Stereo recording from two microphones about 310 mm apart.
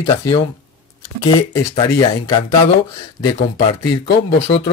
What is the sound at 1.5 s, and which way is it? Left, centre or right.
Speech, centre.